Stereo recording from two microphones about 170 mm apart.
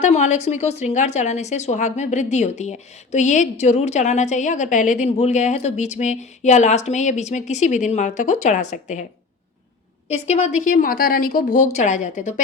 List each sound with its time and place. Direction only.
0.0 s speech: 45° left (ahead or behind)
10.1 s speech: 40° left (ahead or behind)